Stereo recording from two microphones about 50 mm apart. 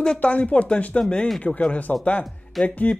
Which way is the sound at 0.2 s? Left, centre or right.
Left.